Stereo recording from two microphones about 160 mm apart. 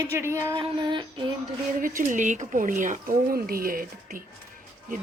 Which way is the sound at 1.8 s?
55° right (ahead or behind).